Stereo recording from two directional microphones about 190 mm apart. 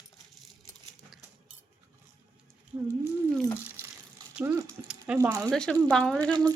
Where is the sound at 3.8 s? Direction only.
10° right (ahead or behind).